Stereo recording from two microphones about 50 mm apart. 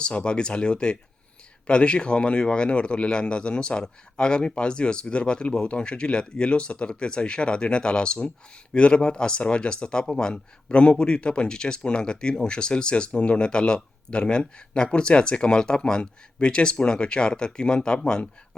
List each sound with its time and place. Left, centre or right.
0.0 s speech: centre